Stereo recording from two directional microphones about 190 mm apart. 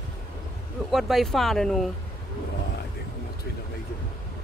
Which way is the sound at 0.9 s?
Centre (ahead or behind).